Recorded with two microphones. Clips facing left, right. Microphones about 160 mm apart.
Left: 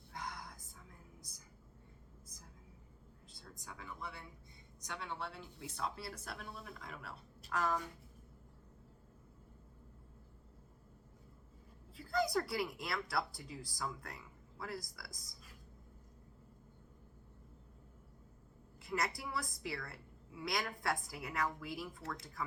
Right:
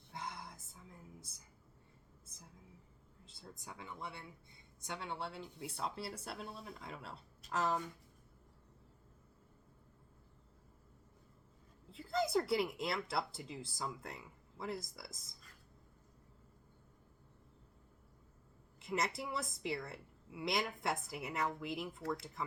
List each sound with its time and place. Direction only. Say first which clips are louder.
0.1 s a sound: even; 25° right (ahead or behind)
3.2 s a woman's voice: right 1 dB; 25° right (ahead or behind)
11.9 s a woman's voice: even; 25° right (ahead or behind)
18.8 s a woman's voice: right 1 dB; 25° right (ahead or behind)